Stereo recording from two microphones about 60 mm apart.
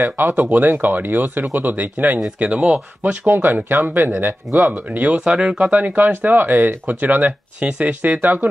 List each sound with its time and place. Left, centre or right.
0.0 s speech: right
2.4 s speech: centre
5.7 s speech: right